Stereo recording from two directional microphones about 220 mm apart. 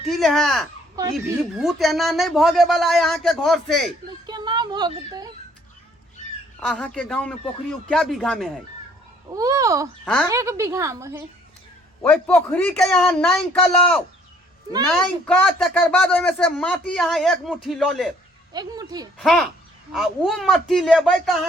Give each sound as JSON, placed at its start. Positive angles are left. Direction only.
{"t": 0.0, "sound": "speech", "side_deg": 0}
{"t": 4.3, "sound": "a sound", "side_deg": -20}
{"t": 6.7, "sound": "speech", "side_deg": 5}
{"t": 9.3, "sound": "a woman's voice", "side_deg": -15}
{"t": 12.0, "sound": "speech", "side_deg": 10}
{"t": 15.0, "sound": "speech", "side_deg": 5}
{"t": 18.5, "sound": "a woman's voice", "side_deg": -15}
{"t": 19.2, "sound": "speech", "side_deg": 5}